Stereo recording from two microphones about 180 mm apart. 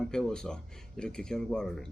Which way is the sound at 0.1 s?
5° left (ahead or behind).